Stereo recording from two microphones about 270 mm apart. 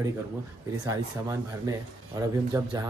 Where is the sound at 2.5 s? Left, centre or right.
Centre.